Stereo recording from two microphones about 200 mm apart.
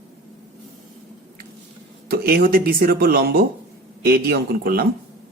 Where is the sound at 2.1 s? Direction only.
50° right (ahead or behind).